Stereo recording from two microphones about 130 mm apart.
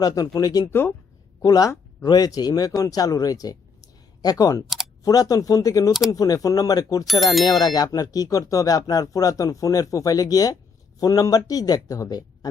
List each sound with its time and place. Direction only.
0.0 s speech: 30° left (ahead or behind)
0.7 s speech: 15° left (ahead or behind)
1.4 s a woman's voice: 30° left (ahead or behind)
7.1 s speech: centre (ahead or behind)
7.6 s speech: 30° left (ahead or behind)